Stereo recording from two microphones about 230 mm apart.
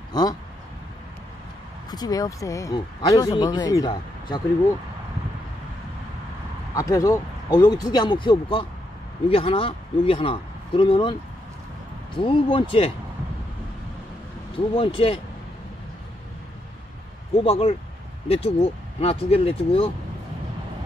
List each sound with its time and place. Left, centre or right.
0.1 s speech: centre
1.9 s speech: centre
6.7 s speech: centre
14.8 s speech: left
17.4 s speech: left